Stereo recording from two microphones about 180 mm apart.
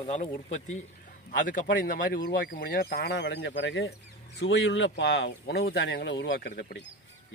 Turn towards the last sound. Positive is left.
turn(degrees=65)  # may be behind; listen again after turning